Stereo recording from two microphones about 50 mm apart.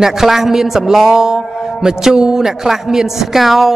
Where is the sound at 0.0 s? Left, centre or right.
Centre.